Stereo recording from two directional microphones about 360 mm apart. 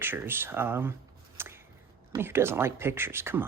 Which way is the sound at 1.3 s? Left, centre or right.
Centre.